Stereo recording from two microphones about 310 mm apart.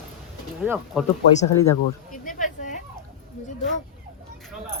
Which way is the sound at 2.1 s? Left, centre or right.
Left.